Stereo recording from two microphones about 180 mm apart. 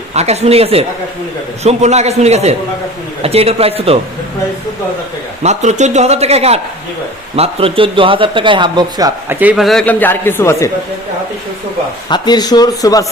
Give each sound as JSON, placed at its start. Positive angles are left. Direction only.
{"t": 0.1, "sound": "a man's voice", "side_deg": -35}
{"t": 5.4, "sound": "a man's voice", "side_deg": -40}
{"t": 9.4, "sound": "speech", "side_deg": -5}
{"t": 12.0, "sound": "speech", "side_deg": 25}